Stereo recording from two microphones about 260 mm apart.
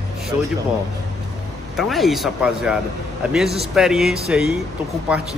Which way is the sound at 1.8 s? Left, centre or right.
Centre.